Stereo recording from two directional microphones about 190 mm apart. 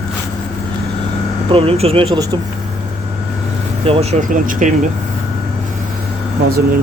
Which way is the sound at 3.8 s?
30° right (ahead or behind).